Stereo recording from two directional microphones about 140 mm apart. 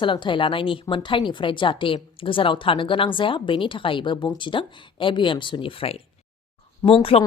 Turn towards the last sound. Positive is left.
turn(degrees=40)  # may be behind; listen again after turning